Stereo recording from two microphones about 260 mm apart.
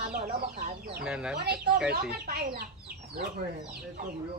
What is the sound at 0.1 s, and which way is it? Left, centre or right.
Chicken, right.